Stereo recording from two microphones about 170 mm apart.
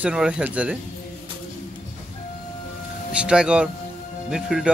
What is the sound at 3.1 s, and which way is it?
Speech, 5° right (ahead or behind).